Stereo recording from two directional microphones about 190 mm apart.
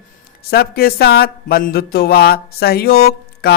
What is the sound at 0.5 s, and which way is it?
Speech, 55° left (ahead or behind).